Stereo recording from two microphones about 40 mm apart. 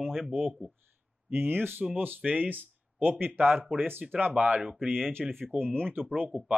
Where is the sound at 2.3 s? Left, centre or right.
Right.